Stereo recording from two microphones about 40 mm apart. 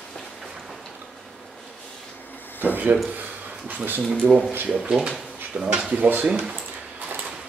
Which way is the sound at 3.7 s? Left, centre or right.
Right.